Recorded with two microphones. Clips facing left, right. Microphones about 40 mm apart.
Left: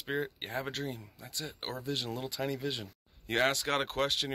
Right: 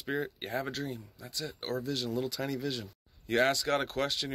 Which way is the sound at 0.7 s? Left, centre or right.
Left.